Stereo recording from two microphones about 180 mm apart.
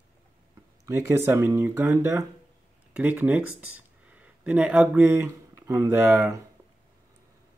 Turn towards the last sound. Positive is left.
turn(degrees=-15)  # may be behind; listen again after turning